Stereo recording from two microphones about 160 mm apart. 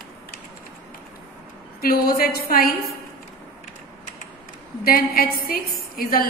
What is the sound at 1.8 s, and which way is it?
Speech, 70° left (ahead or behind).